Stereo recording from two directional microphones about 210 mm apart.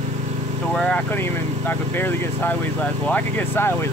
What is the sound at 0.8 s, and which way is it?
Speech, 5° left (ahead or behind).